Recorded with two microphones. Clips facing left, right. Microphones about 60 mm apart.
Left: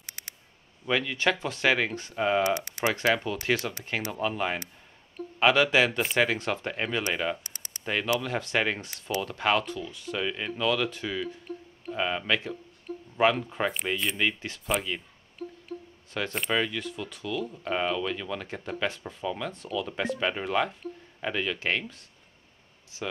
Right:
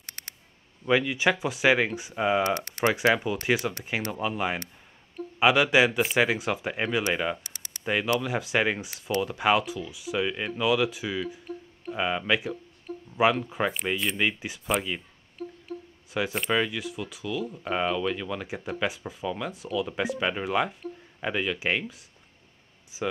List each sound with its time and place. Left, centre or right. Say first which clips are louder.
0.0 s a sound: right 1 dB; right
0.8 s speech: right 3 dB; centre
2.4 s speech: right 1 dB; right
2.9 s speech: right 2 dB; centre
14.7 s a sound: right 1 dB; centre
15.7 s music: right 1 dB; centre
16.1 s speech: right 2 dB; centre